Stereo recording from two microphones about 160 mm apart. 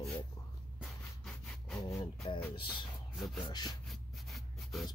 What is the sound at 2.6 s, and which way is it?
Speech, 30° left (ahead or behind).